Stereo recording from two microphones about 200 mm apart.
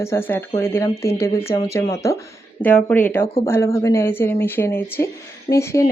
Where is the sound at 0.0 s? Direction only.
10° left (ahead or behind).